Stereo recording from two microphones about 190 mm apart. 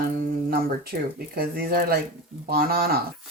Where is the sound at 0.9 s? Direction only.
55° right (ahead or behind).